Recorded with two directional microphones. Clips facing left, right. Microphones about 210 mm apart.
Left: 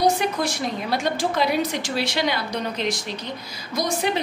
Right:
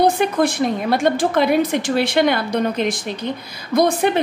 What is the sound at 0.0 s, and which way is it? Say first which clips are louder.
A woman's voice: right 5 dB; 55° right (ahead or behind).